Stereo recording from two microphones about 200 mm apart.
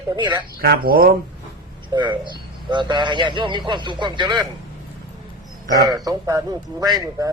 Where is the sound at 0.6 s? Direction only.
50° right (ahead or behind).